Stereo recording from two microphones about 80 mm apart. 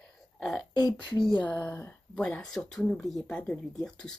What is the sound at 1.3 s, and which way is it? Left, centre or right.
Speech, centre.